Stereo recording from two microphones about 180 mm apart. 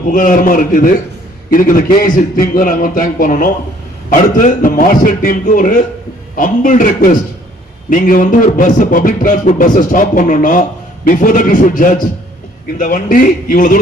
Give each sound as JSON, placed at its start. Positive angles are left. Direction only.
{"t": 0.1, "sound": "a man's voice", "side_deg": 50}